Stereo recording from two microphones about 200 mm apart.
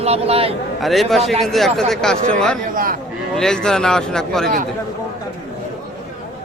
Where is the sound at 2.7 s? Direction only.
45° right (ahead or behind).